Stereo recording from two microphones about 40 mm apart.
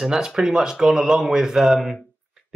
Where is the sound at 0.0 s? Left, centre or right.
Centre.